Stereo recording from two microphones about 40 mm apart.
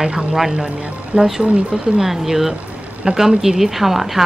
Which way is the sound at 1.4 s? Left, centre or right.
Right.